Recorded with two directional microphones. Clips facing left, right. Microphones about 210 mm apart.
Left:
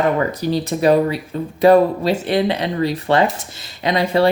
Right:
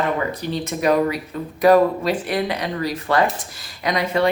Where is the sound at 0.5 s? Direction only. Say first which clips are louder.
Left 4 dB; 35° left (ahead or behind).